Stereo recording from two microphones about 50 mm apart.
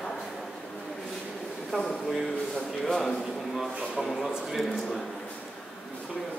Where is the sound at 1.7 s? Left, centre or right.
Right.